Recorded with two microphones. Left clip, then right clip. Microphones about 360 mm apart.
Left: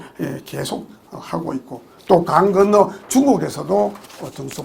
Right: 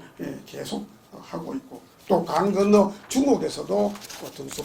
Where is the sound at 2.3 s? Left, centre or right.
Left.